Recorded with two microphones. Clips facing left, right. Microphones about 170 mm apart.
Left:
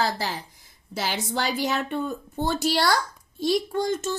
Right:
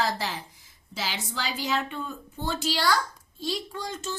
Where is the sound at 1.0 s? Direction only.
55° left (ahead or behind).